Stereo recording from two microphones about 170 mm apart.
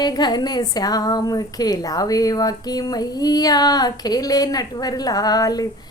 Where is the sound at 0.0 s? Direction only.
25° left (ahead or behind).